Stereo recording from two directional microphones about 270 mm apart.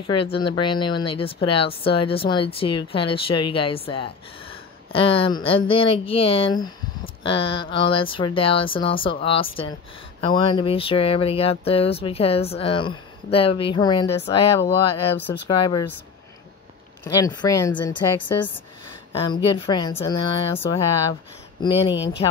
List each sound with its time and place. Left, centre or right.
0.0 s speech: centre
17.0 s speech: centre
21.9 s speech: left